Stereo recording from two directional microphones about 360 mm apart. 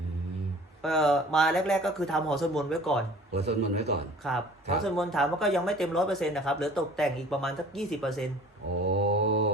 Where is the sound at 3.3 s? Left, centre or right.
Right.